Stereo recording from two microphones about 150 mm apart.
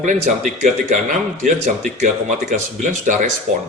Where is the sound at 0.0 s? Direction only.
55° right (ahead or behind).